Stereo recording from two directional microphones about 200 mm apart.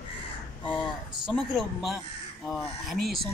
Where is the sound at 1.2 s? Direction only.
Centre (ahead or behind).